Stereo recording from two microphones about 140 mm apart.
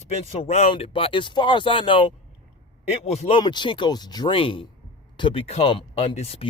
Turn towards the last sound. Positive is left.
turn(degrees=45)  # may be behind; listen again after turning